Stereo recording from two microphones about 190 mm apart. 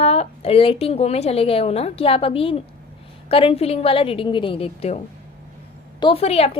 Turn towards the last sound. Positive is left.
turn(degrees=30)  # may be behind; listen again after turning